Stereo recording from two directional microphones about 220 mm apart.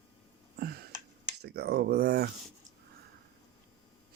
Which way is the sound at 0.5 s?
45° right (ahead or behind).